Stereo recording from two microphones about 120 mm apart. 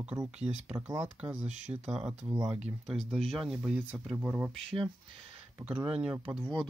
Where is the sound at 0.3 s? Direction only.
10° right (ahead or behind).